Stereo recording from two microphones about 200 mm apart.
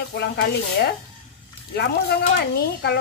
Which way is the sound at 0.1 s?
55° left (ahead or behind).